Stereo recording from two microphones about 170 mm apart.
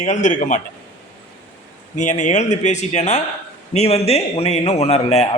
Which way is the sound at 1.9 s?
45° left (ahead or behind).